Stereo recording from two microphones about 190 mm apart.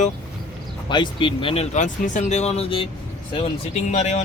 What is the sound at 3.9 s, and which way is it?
Speech, 40° left (ahead or behind).